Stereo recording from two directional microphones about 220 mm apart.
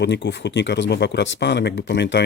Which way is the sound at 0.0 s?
55° left (ahead or behind).